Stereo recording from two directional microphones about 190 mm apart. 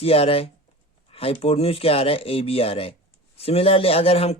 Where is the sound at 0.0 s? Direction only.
30° left (ahead or behind).